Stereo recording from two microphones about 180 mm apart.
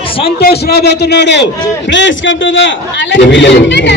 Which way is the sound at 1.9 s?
90° left.